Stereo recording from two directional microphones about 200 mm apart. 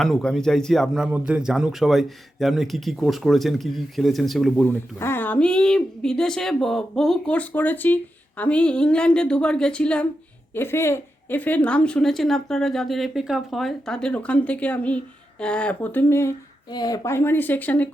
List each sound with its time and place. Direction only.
0.0 s speech: 5° left (ahead or behind)